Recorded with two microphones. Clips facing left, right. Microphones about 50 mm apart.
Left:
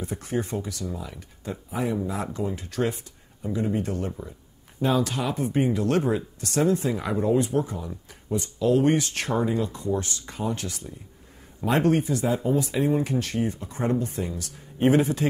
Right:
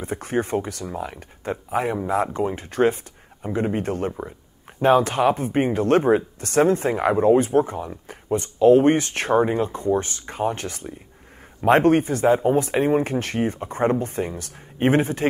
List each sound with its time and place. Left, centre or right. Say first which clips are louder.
0.0 s speech: right 4 dB; right